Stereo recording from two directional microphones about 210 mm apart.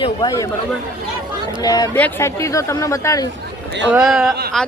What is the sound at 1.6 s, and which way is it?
Speech, 20° left (ahead or behind).